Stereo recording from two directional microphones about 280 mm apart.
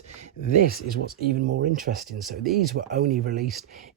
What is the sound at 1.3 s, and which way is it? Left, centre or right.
Speech, right.